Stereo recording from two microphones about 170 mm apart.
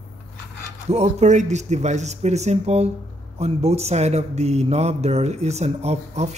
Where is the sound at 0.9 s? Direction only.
40° right (ahead or behind).